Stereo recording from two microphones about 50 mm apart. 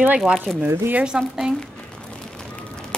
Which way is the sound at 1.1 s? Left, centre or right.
Centre.